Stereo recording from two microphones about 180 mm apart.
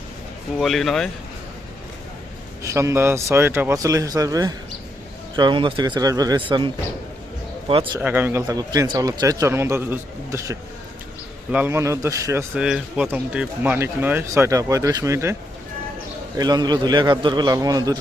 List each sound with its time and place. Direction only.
0.6 s speech: centre (ahead or behind)
2.6 s a man's voice: 15° right (ahead or behind)
7.9 s a man's voice: 10° right (ahead or behind)
16.4 s a man's voice: 20° right (ahead or behind)